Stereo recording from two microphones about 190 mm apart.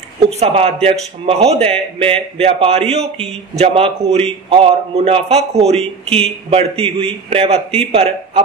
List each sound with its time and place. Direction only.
0.4 s a man's voice: 30° right (ahead or behind)